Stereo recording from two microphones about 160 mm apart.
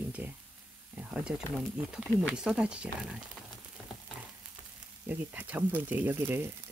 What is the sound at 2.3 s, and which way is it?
Speech, 5° right (ahead or behind).